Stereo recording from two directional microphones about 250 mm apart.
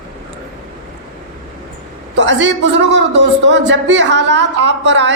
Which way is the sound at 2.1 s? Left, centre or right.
Right.